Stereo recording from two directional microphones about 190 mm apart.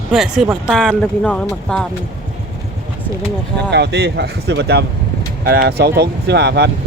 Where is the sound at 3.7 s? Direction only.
60° right (ahead or behind).